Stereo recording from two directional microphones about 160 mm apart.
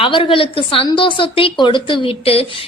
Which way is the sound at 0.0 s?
35° left (ahead or behind).